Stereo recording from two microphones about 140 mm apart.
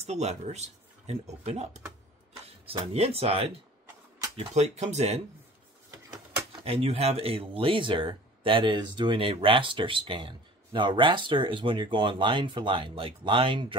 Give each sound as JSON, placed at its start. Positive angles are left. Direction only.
{"t": 0.0, "sound": "speech", "side_deg": -50}
{"t": 4.6, "sound": "speech", "side_deg": -55}
{"t": 6.6, "sound": "speech", "side_deg": -45}